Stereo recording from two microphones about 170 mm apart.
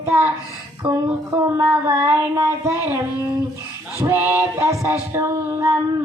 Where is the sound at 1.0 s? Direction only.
15° right (ahead or behind).